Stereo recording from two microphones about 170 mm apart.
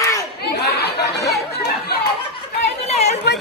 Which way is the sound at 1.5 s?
70° left (ahead or behind).